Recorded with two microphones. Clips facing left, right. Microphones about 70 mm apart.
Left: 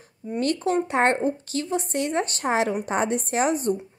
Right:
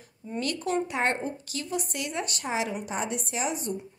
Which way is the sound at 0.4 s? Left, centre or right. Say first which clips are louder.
Left 5 dB; left.